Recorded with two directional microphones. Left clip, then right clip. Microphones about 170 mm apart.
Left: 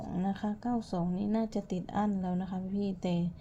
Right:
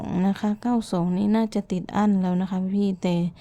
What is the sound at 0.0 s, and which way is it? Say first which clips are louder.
Speech: right 9 dB; 50° right (ahead or behind).